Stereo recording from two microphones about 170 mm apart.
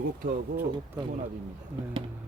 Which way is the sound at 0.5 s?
10° right (ahead or behind).